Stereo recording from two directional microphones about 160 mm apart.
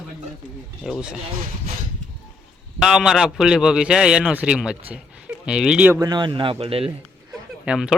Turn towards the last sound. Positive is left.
turn(degrees=-5)  # may be behind; listen again after turning